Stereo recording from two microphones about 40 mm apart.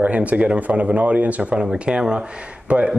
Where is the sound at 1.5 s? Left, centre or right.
Right.